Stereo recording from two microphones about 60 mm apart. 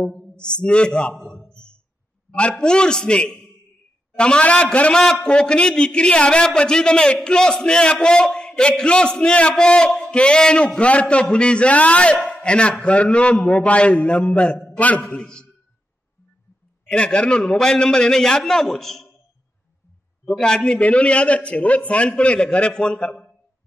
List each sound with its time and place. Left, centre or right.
0.0 s a man's voice: centre
15.0 s a man's voice: centre
16.8 s a man's voice: centre
20.2 s a man's voice: centre